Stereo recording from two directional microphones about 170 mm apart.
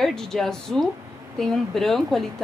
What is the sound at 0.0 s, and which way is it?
A woman's voice, 5° left (ahead or behind).